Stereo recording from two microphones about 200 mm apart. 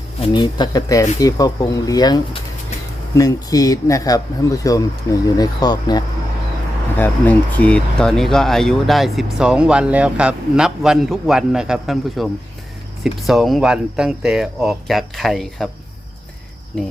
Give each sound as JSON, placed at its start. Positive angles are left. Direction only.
{"t": 0.3, "sound": "speech", "side_deg": 20}
{"t": 6.9, "sound": "speech", "side_deg": 10}
{"t": 16.7, "sound": "speech", "side_deg": 5}